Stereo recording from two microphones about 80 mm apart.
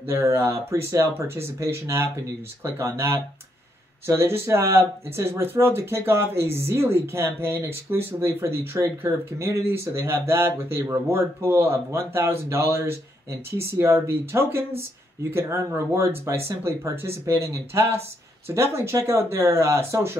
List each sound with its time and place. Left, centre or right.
0.0 s speech: right